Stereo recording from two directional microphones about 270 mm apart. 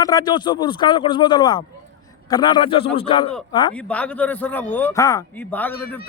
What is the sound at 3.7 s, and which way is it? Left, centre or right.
Speech, centre.